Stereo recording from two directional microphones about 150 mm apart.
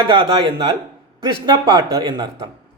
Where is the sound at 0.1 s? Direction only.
30° right (ahead or behind).